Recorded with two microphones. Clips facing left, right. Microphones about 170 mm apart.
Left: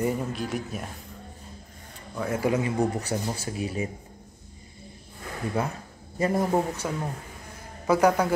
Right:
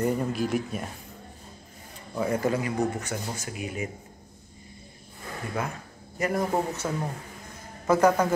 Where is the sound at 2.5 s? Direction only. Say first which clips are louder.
Left 2 dB; 30° left (ahead or behind).